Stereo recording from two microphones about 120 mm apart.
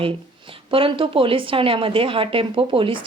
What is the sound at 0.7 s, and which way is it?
Speech, 50° right (ahead or behind).